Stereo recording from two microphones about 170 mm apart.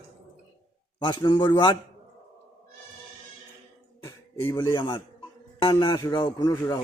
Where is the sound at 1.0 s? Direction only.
25° left (ahead or behind).